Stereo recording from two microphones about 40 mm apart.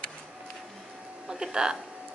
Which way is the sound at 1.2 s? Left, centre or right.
Centre.